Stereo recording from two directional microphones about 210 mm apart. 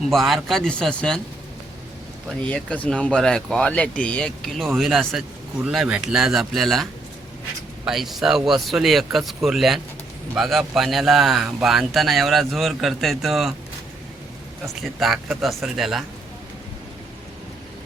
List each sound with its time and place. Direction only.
0.1 s speech: centre (ahead or behind)
2.5 s speech: 5° left (ahead or behind)
7.9 s speech: centre (ahead or behind)
14.6 s speech: centre (ahead or behind)